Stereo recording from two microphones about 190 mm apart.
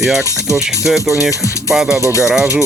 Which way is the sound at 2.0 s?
15° left (ahead or behind).